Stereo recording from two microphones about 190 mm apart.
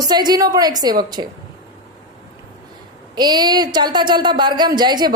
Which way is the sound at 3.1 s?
20° right (ahead or behind).